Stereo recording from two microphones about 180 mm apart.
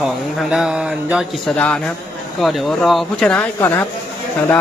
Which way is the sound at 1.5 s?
5° left (ahead or behind).